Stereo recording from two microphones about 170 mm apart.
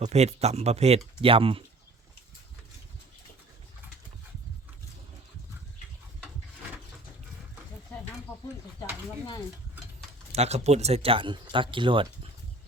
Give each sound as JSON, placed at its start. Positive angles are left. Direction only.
{"t": 0.0, "sound": "speech", "side_deg": -40}
{"t": 10.3, "sound": "speech", "side_deg": -40}